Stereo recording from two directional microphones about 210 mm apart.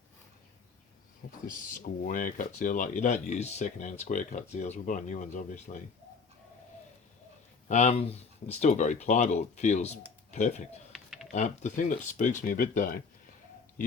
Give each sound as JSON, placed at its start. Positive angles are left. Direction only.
{"t": 1.5, "sound": "speech", "side_deg": 40}
{"t": 7.7, "sound": "speech", "side_deg": 35}
{"t": 10.9, "sound": "typing", "side_deg": 0}
{"t": 11.3, "sound": "speech", "side_deg": 35}